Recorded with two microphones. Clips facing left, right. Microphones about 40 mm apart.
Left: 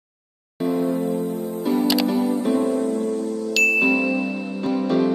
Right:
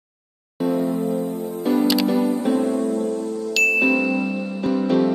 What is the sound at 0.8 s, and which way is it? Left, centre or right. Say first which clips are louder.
Music: even; left.